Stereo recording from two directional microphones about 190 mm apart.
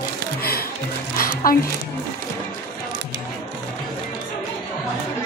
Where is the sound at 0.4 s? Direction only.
55° left (ahead or behind).